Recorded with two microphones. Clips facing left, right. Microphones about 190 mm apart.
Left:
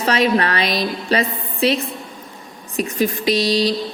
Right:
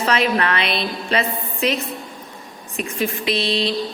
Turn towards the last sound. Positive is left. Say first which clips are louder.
# left 4 dB
turn(degrees=40)  # may be behind; listen again after turning